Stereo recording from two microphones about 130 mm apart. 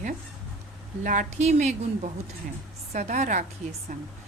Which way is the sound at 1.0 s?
80° right.